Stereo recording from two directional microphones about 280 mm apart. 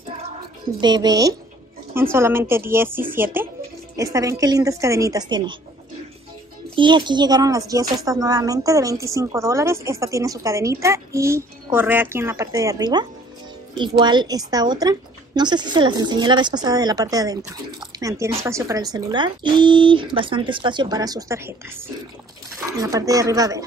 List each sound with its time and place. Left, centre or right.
0.7 s speech: centre
6.7 s speech: centre